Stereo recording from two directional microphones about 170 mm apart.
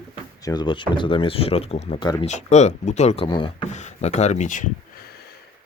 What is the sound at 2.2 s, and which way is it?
Speech, 40° left (ahead or behind).